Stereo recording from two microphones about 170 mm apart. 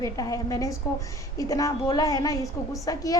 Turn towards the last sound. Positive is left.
turn(degrees=20)  # may be behind; listen again after turning